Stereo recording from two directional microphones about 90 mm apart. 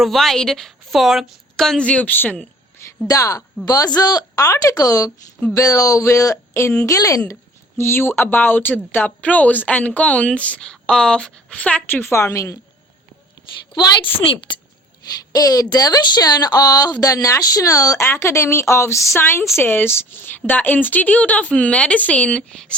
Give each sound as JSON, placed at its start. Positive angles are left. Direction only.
{"t": 0.0, "sound": "a woman's voice", "side_deg": 0}
{"t": 3.1, "sound": "a woman's voice", "side_deg": 40}
{"t": 13.7, "sound": "a woman's voice", "side_deg": 50}
{"t": 14.0, "sound": "a woman's voice", "side_deg": 75}
{"t": 15.2, "sound": "speech", "side_deg": 45}